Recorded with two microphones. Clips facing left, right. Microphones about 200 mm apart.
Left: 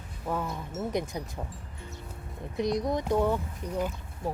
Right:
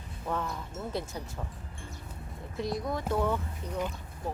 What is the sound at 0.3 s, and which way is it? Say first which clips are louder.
Speech: left 2 dB; 5° left (ahead or behind).